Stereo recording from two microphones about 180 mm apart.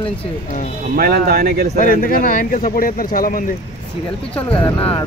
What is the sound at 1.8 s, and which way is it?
Speech, 50° left (ahead or behind).